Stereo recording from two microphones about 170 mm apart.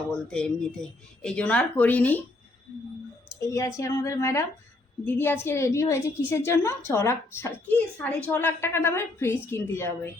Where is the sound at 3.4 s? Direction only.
20° left (ahead or behind).